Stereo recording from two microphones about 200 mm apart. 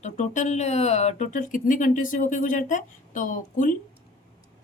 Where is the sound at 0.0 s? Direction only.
35° left (ahead or behind).